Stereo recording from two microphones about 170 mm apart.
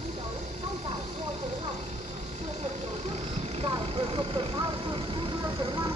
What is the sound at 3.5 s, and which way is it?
Vehicle, 35° right (ahead or behind).